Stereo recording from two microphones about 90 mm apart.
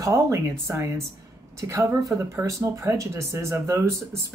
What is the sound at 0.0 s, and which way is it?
Speech, 35° right (ahead or behind).